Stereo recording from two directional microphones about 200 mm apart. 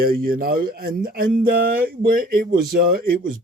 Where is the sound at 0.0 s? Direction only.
50° right (ahead or behind).